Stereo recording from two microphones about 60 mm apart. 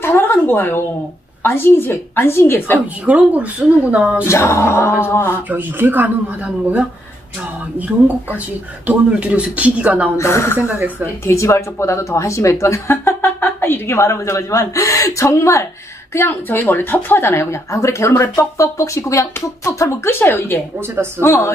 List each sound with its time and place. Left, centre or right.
0.0 s a woman's voice: left
3.1 s speech: right
4.3 s a woman's voice: left
5.5 s speech: right
8.8 s speech: right
10.1 s a woman's voice: left
10.6 s speech: right
11.2 s speech: left
13.2 s speech: left
16.1 s a woman's voice: left
20.1 s a woman's voice: left